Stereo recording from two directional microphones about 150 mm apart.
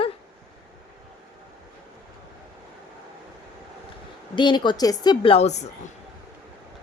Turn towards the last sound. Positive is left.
turn(degrees=45)  # may be behind; listen again after turning